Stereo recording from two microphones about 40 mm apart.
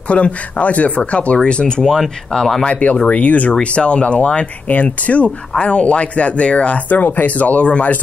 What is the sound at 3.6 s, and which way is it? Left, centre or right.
Speech, left.